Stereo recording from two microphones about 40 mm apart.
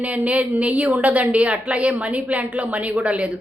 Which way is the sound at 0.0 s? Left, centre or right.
Right.